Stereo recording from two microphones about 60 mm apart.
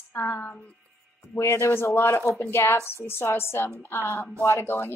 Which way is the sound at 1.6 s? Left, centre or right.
Left.